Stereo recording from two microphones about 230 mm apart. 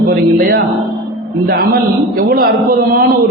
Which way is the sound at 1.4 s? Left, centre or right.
Right.